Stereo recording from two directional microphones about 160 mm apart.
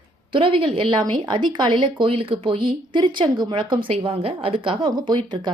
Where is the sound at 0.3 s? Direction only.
35° right (ahead or behind).